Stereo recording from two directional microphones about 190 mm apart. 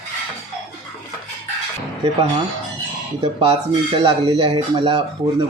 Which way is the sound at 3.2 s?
30° right (ahead or behind).